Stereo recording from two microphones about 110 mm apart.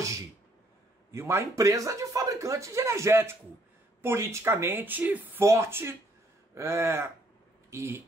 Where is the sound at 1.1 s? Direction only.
25° right (ahead or behind).